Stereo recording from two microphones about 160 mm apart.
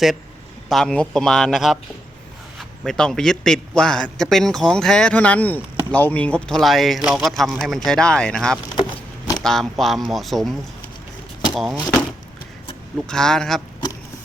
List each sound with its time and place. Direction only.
0.7 s a man's voice: 5° left (ahead or behind)
8.7 s a sound: 30° left (ahead or behind)
9.4 s a man's voice: 5° left (ahead or behind)
13.1 s a man's voice: 5° left (ahead or behind)